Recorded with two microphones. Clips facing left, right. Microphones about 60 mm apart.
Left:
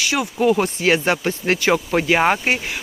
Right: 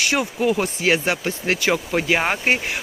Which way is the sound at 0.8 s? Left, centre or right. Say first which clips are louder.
Left 1 dB; centre.